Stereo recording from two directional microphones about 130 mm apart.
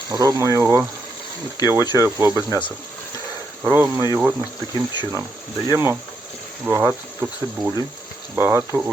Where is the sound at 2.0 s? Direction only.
20° right (ahead or behind).